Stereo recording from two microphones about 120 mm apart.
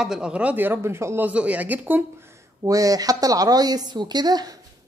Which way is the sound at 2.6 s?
30° right (ahead or behind).